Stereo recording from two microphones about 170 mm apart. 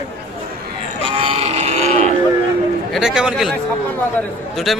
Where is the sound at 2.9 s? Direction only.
Centre (ahead or behind).